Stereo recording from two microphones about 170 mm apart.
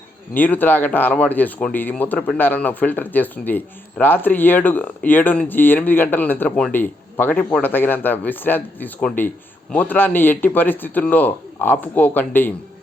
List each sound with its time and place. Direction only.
0.3 s speech: 10° left (ahead or behind)